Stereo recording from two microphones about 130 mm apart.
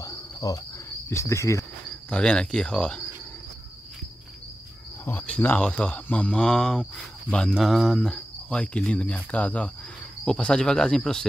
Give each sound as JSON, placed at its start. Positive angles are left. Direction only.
{"t": 0.0, "sound": "insect", "side_deg": 25}
{"t": 1.1, "sound": "cricket", "side_deg": 20}
{"t": 2.0, "sound": "speech", "side_deg": 10}
{"t": 5.0, "sound": "speech", "side_deg": 10}